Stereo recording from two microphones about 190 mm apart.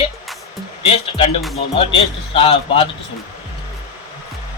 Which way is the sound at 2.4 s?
30° left (ahead or behind).